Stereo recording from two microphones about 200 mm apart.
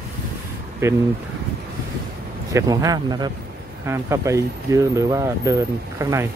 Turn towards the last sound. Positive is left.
turn(degrees=-15)  # may be behind; listen again after turning